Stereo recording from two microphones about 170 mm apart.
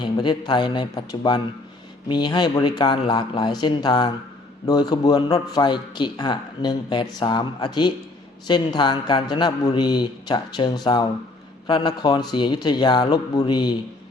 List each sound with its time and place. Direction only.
0.0 s a man's voice: 25° left (ahead or behind)